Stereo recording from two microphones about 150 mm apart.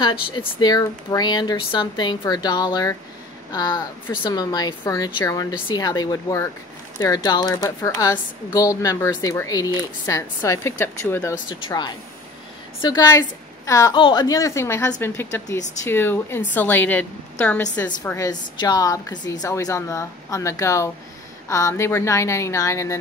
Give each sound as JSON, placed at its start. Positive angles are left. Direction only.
{"t": 0.0, "sound": "a woman's voice", "side_deg": 35}
{"t": 11.4, "sound": "a woman's voice", "side_deg": 30}